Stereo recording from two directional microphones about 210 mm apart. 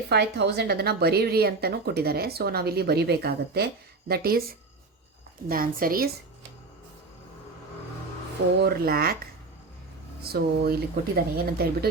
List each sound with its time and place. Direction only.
0.1 s speech: 50° right (ahead or behind)
8.6 s speech: 45° right (ahead or behind)
10.2 s speech: 50° right (ahead or behind)